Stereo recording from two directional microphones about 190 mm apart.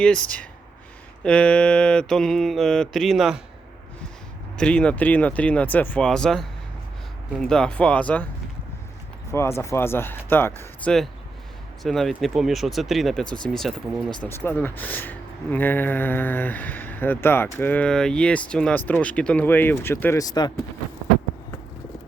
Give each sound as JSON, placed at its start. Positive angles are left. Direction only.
{"t": 0.0, "sound": "mantra", "side_deg": 5}
{"t": 4.5, "sound": "speech", "side_deg": 5}
{"t": 7.4, "sound": "mantra", "side_deg": 5}
{"t": 9.3, "sound": "speech", "side_deg": 15}
{"t": 11.8, "sound": "mantra", "side_deg": 0}
{"t": 14.2, "sound": "speech", "side_deg": 10}